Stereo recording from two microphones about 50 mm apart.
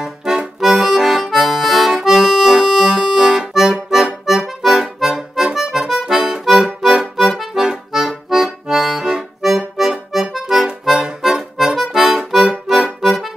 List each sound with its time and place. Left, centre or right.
0.0 s accordion: centre
1.2 s music: centre
3.9 s accordion: centre